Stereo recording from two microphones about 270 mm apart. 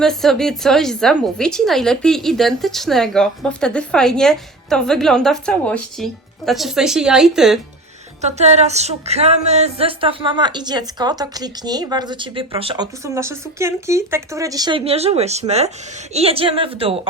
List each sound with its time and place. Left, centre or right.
0.0 s speech: centre
8.2 s music: right
16.1 s speech: right